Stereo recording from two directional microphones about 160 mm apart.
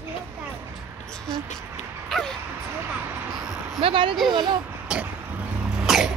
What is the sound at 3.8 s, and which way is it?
Speech, 35° right (ahead or behind).